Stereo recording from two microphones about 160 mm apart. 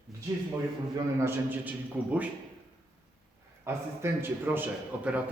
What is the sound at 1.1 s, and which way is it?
A man's voice, 15° right (ahead or behind).